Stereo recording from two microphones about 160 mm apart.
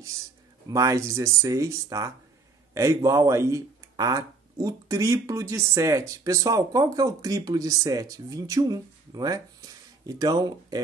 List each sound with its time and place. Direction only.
0.7 s speech: 20° right (ahead or behind)